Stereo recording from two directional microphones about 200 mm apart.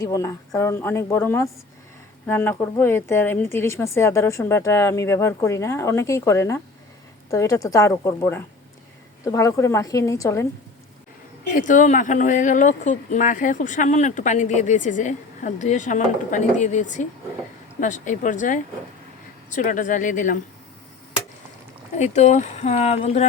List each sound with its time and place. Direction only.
0.0 s speech: 15° left (ahead or behind)
11.5 s speech: 40° left (ahead or behind)
21.9 s speech: 35° left (ahead or behind)